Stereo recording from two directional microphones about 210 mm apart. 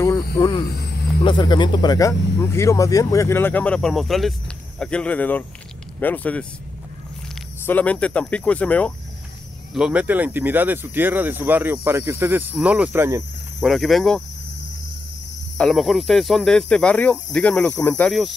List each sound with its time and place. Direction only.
0.4 s music: 20° left (ahead or behind)
0.7 s music: 50° left (ahead or behind)
1.2 s speech: 20° left (ahead or behind); by 6.4 s 5° left (ahead or behind)
7.6 s speech: 5° left (ahead or behind)
9.8 s speech: 5° right (ahead or behind)
13.6 s speech: centre (ahead or behind)
15.5 s speech: centre (ahead or behind)